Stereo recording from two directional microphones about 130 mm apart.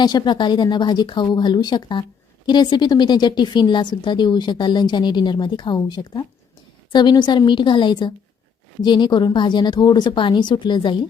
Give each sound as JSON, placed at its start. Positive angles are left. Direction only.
{"t": 0.0, "sound": "a woman's voice", "side_deg": 35}